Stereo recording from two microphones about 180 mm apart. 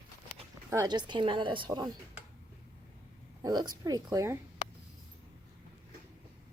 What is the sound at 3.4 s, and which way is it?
A woman's voice, 20° right (ahead or behind).